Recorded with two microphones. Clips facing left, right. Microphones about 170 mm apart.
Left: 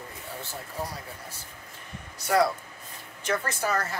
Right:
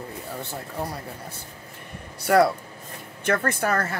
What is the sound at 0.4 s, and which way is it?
Speech, 60° right (ahead or behind).